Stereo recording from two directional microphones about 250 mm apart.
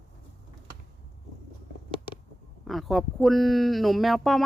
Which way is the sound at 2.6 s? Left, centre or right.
Centre.